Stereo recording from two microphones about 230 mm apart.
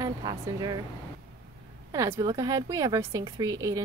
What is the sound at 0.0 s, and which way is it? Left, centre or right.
Speech, centre.